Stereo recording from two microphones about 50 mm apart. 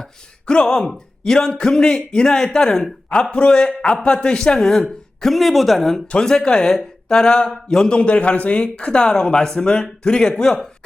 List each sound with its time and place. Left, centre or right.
0.0 s speech: centre
6.1 s speech: centre
7.9 s speech: left